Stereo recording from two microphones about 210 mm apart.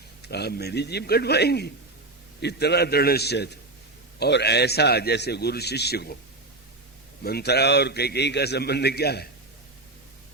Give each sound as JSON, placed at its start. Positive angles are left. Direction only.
{"t": 0.2, "sound": "a man's voice", "side_deg": 50}
{"t": 7.3, "sound": "a man's voice", "side_deg": 50}